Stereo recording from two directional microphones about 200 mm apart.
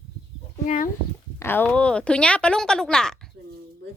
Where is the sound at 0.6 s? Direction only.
40° left (ahead or behind).